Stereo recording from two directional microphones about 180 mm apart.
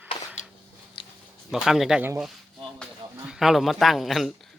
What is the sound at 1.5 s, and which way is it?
Speech, centre (ahead or behind).